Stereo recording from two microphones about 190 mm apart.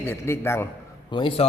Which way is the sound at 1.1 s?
25° left (ahead or behind).